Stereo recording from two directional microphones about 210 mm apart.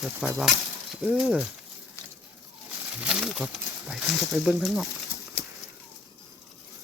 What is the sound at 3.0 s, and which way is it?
Speech, 5° right (ahead or behind).